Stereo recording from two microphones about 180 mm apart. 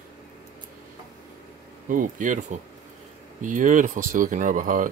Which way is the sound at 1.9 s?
45° right (ahead or behind).